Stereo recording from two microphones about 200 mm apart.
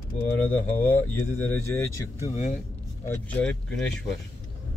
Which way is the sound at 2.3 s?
40° left (ahead or behind).